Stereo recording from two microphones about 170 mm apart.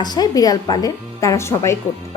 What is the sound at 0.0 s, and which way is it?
A woman's voice, 25° left (ahead or behind).